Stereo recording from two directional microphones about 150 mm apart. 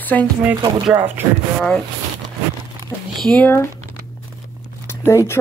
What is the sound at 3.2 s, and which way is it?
Speech, 5° left (ahead or behind).